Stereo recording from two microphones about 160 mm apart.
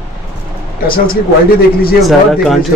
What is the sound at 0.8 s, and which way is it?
Speech, 65° left (ahead or behind).